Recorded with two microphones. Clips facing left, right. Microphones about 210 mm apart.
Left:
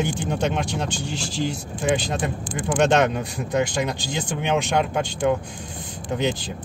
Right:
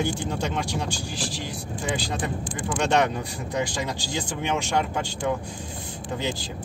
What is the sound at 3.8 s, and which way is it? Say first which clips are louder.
Speech: left 3 dB; 20° left (ahead or behind).